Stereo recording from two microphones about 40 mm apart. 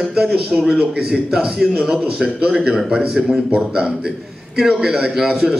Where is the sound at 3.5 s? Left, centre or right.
Right.